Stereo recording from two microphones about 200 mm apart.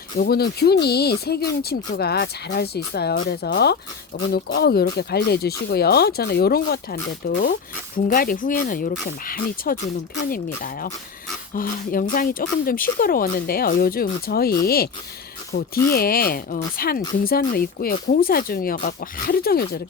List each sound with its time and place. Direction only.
0.2 s speech: 50° left (ahead or behind)
7.9 s speech: 45° left (ahead or behind)